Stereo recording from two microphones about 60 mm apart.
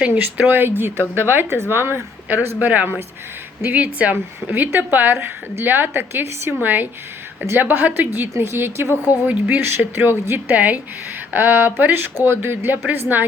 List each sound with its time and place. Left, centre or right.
0.0 s a woman's voice: right
9.2 s speech: right
9.6 s a woman's voice: right